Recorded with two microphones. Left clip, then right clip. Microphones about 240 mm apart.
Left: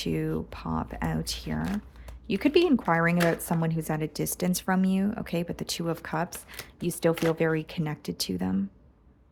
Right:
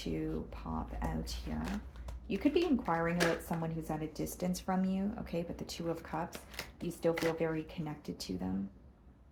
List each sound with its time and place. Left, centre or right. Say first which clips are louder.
0.0 s speech: left 8 dB; left